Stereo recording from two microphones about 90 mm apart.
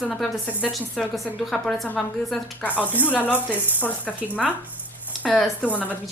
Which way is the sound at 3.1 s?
20° left (ahead or behind).